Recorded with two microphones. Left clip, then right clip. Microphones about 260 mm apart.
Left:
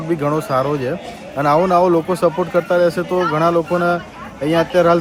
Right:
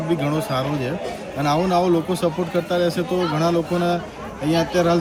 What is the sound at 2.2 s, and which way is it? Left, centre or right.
Speech, left.